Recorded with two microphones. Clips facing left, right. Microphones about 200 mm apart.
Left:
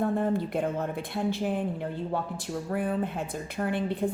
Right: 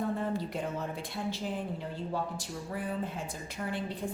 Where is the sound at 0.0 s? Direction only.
55° left (ahead or behind).